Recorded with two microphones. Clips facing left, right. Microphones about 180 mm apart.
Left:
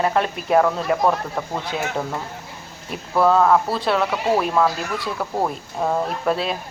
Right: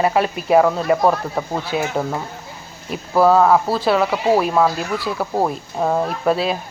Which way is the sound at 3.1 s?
5° right (ahead or behind).